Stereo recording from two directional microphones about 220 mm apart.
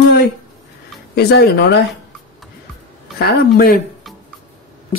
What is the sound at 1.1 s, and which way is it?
Speech, 50° left (ahead or behind).